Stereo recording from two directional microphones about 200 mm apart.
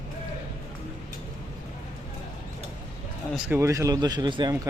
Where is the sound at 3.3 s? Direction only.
10° right (ahead or behind).